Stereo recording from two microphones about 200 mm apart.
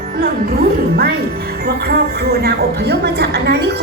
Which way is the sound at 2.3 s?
55° right (ahead or behind).